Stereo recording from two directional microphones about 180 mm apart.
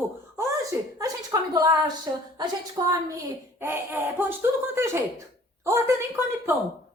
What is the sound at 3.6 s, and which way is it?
Speech, 10° right (ahead or behind).